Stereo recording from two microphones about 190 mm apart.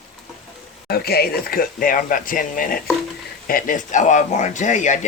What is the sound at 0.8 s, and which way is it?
Speech, 55° left (ahead or behind).